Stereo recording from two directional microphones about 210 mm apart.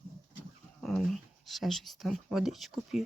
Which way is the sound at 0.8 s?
Centre (ahead or behind).